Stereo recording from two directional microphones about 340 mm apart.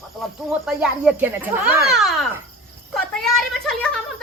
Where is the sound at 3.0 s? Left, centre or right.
Centre.